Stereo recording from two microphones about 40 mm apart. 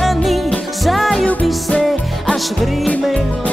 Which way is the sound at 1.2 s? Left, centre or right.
Left.